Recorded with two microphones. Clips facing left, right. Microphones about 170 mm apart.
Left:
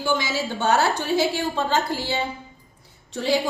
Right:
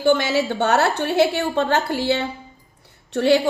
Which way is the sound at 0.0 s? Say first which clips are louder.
Right 7 dB; 60° right (ahead or behind).